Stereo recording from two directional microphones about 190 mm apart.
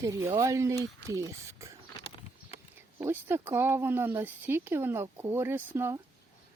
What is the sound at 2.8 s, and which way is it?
Speech, 10° right (ahead or behind).